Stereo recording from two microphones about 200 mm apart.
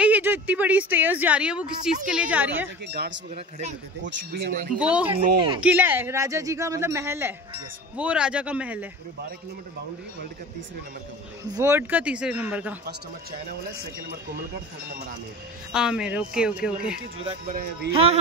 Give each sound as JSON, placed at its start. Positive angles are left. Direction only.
{"t": 0.0, "sound": "a woman's voice", "side_deg": -10}
{"t": 2.9, "sound": "a man's voice", "side_deg": -55}
{"t": 4.7, "sound": "a woman's voice", "side_deg": -5}
{"t": 5.1, "sound": "speech", "side_deg": -25}
{"t": 5.6, "sound": "a woman's voice", "side_deg": -10}
{"t": 11.5, "sound": "a woman's voice", "side_deg": -15}
{"t": 15.7, "sound": "speech", "side_deg": -5}
{"t": 17.2, "sound": "speech", "side_deg": -30}